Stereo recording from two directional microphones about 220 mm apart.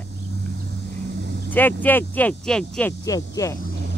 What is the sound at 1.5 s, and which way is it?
Speech, 10° left (ahead or behind).